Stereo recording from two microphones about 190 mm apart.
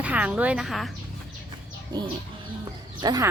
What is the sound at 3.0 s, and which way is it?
Speech, 20° right (ahead or behind).